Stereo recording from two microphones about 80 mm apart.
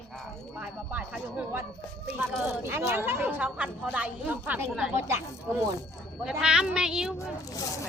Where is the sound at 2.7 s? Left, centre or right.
Right.